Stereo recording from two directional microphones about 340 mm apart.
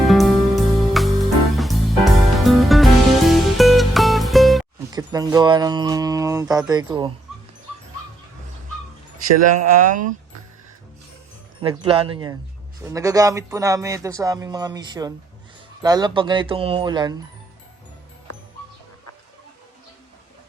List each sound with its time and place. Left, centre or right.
0.1 s music: centre
4.9 s speech: centre
9.2 s speech: right
11.6 s speech: centre